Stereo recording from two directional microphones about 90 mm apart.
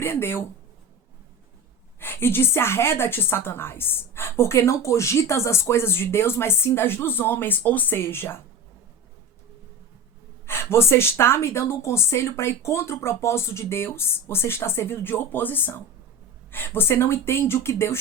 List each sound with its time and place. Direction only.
0.0 s speech: 30° left (ahead or behind)
2.0 s a woman's voice: 25° left (ahead or behind)
10.4 s a woman's voice: 30° left (ahead or behind)